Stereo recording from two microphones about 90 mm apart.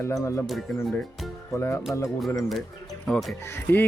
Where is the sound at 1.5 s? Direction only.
30° left (ahead or behind).